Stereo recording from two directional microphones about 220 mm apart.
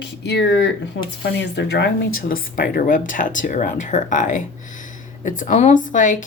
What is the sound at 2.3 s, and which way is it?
Speech, 40° left (ahead or behind).